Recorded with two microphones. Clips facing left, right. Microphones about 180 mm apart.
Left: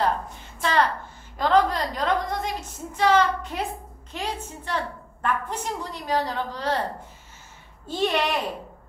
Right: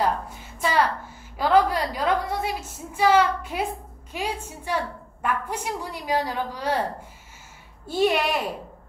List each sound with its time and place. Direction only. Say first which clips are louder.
0.0 s a woman's voice: even; 10° right (ahead or behind)